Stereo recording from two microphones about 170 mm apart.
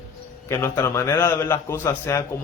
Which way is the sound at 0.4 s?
15° left (ahead or behind).